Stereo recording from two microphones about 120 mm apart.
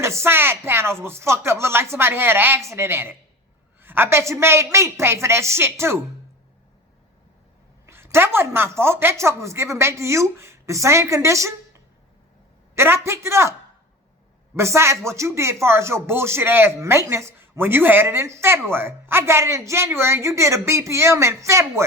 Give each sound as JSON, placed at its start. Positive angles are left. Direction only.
{"t": 0.0, "sound": "speech", "side_deg": -20}
{"t": 7.9, "sound": "speech", "side_deg": -20}
{"t": 14.5, "sound": "speech", "side_deg": -20}